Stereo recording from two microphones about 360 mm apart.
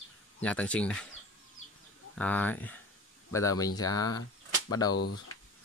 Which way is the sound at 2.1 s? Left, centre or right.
Centre.